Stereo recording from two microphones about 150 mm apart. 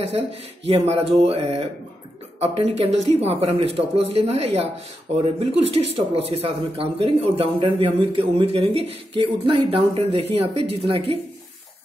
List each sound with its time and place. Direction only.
0.7 s speech: 40° right (ahead or behind)